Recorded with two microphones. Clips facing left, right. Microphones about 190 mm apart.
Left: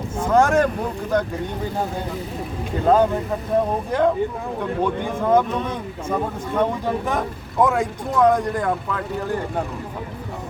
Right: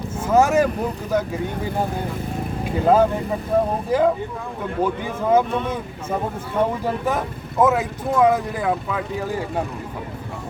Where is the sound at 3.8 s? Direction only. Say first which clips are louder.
Even; 5° right (ahead or behind).